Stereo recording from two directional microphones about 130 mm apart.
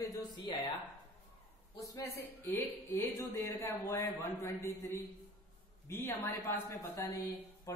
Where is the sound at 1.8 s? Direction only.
25° left (ahead or behind).